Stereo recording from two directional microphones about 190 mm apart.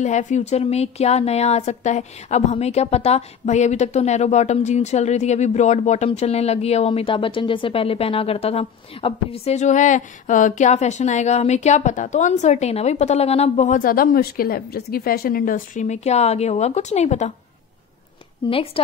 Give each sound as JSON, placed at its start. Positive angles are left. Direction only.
{"t": 0.0, "sound": "a woman's voice", "side_deg": 40}
{"t": 18.4, "sound": "a woman's voice", "side_deg": 25}